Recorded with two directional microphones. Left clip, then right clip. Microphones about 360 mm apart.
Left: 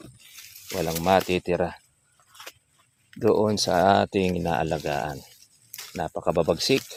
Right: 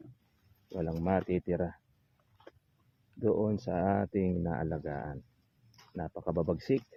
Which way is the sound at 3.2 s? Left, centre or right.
Left.